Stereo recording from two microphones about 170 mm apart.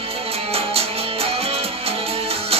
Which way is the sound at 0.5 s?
35° right (ahead or behind).